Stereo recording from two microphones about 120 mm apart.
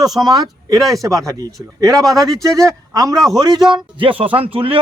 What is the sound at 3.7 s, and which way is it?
Speech, 50° right (ahead or behind).